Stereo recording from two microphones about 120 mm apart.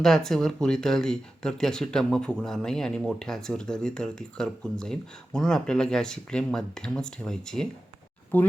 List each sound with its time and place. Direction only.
0.0 s speech: 5° left (ahead or behind)
8.3 s speech: 15° left (ahead or behind)